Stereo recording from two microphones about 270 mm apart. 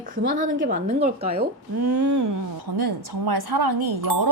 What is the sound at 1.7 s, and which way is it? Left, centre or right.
Speech, right.